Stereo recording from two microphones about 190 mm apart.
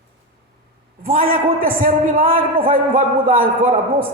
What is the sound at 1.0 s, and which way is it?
A man's voice, 50° right (ahead or behind).